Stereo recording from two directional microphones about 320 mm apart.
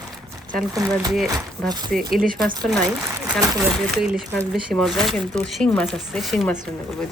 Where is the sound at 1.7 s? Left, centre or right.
Centre.